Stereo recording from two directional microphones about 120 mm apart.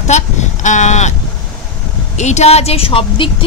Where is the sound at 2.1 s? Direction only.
70° left (ahead or behind); by 3.4 s 50° left (ahead or behind).